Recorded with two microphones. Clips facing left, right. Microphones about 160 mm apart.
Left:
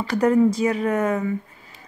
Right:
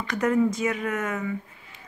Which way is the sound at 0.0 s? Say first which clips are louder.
Left 5 dB; 35° left (ahead or behind).